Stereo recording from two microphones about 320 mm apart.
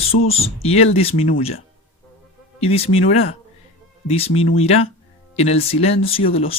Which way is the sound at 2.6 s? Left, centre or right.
Centre.